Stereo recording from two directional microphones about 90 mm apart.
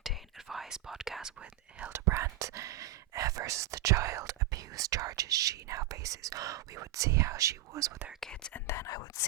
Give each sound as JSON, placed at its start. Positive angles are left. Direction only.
{"t": 0.0, "sound": "whispering", "side_deg": 0}
{"t": 1.9, "sound": "speech", "side_deg": -30}
{"t": 8.2, "sound": "speech", "side_deg": 10}
{"t": 8.6, "sound": "speech", "side_deg": 25}
{"t": 8.9, "sound": "speech", "side_deg": 45}